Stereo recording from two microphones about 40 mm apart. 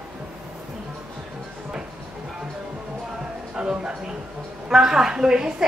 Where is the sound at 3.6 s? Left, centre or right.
Right.